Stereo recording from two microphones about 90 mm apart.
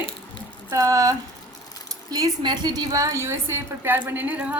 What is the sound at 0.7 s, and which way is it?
A woman's voice, 40° right (ahead or behind).